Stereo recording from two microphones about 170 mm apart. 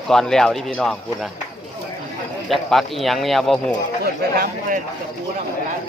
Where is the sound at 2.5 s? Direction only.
Centre (ahead or behind).